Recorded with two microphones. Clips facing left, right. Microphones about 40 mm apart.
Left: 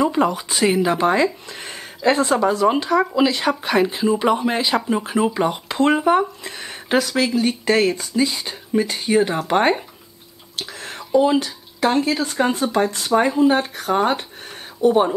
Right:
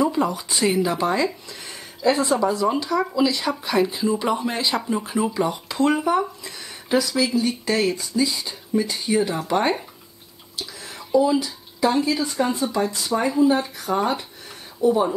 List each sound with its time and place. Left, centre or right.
0.0 s speech: left; by 0.8 s centre
0.8 s speech: left
10.8 s a sound: left
11.1 s speech: left